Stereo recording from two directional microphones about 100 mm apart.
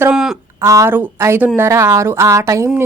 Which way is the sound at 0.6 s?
25° right (ahead or behind).